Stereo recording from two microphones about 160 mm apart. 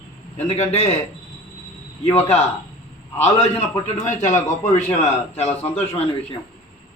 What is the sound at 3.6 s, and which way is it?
A man's voice, 45° left (ahead or behind).